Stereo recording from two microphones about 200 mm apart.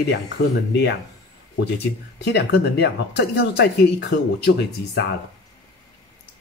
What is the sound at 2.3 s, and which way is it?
Speech, 55° left (ahead or behind).